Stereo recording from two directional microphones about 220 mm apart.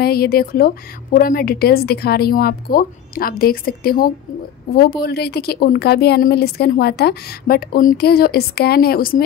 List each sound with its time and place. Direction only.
0.0 s a woman's voice: 45° left (ahead or behind)